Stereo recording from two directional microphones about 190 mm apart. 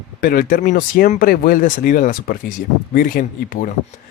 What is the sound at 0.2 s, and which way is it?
Speech, 50° left (ahead or behind).